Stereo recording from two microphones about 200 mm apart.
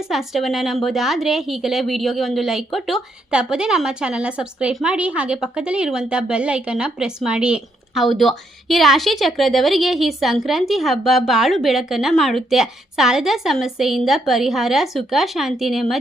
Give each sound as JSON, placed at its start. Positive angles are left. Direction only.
{"t": 0.1, "sound": "a woman's voice", "side_deg": 0}